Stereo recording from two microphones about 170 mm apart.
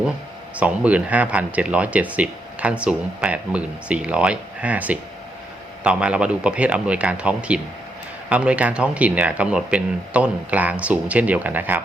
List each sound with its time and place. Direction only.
0.5 s speech: 10° right (ahead or behind)